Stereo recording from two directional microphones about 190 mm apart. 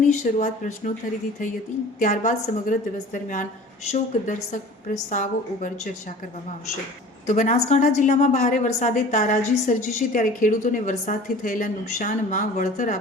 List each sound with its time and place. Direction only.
0.1 s a woman's voice: 40° left (ahead or behind)
2.0 s a woman's voice: 40° left (ahead or behind)
7.3 s a woman's voice: 40° left (ahead or behind)